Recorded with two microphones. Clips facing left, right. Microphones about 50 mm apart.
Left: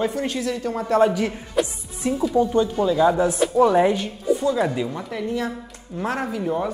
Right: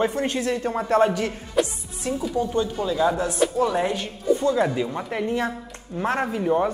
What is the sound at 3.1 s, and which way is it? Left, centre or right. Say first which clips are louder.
Speech: left 3 dB; centre.